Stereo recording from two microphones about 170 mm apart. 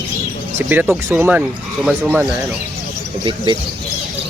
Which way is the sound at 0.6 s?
10° right (ahead or behind).